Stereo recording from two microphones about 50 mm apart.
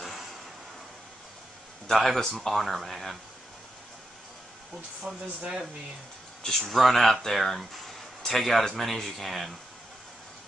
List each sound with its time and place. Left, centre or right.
0.0 s a sound: centre
1.9 s speech: centre
5.0 s speech: centre
6.4 s speech: centre